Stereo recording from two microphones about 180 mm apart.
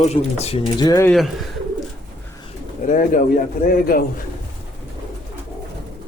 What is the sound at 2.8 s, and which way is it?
Speech, 45° left (ahead or behind).